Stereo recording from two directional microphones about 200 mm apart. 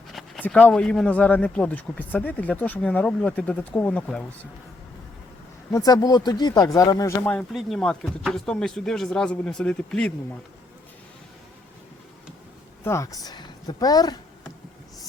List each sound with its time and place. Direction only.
0.1 s speech: 5° left (ahead or behind)
5.7 s speech: 20° left (ahead or behind)
12.8 s speech: 15° left (ahead or behind)